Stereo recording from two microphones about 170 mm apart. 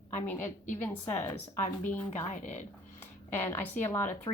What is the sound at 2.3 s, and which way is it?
Speech, 45° left (ahead or behind).